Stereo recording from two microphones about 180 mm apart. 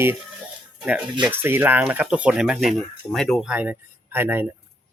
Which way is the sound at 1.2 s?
10° right (ahead or behind).